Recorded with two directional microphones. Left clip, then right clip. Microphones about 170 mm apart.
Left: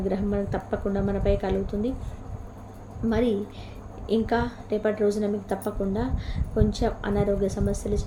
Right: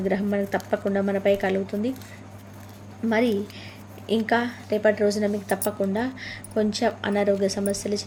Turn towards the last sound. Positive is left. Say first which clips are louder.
# right 2 dB
turn(degrees=-20)  # may be behind; listen again after turning